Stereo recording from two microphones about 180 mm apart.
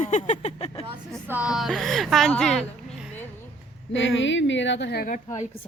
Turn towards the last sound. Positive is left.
turn(degrees=40)  # may be behind; listen again after turning